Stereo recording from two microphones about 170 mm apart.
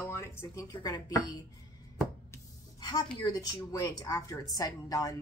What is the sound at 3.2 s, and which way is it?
Speech, 20° left (ahead or behind).